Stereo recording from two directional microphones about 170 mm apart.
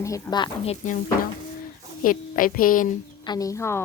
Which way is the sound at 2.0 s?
55° left (ahead or behind).